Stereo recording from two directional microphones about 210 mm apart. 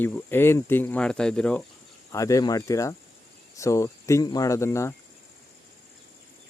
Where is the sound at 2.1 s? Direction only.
15° left (ahead or behind).